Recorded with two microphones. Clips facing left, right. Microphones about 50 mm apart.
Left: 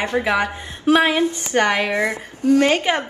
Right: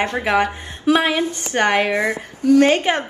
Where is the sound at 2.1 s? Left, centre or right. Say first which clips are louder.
Right 2 dB; left.